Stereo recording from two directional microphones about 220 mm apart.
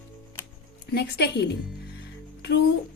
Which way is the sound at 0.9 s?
50° left (ahead or behind).